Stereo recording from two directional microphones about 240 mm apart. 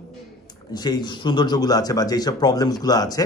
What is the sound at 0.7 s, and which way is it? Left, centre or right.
Speech, centre.